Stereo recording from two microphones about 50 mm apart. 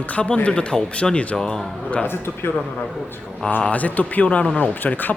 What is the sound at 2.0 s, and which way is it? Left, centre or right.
Speech, left.